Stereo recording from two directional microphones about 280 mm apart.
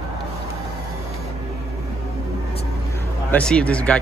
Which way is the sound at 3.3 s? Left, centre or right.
Centre.